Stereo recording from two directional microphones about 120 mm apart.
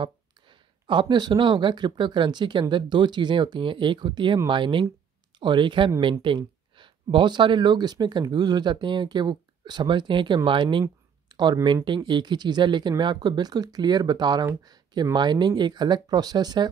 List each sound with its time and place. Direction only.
0.0 s speech: 45° right (ahead or behind)